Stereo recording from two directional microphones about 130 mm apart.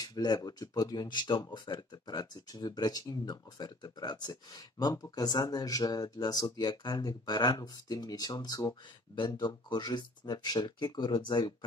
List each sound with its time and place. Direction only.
0.0 s speech: 30° left (ahead or behind)